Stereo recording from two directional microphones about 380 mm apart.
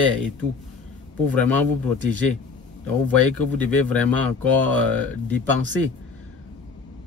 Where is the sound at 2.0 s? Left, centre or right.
Right.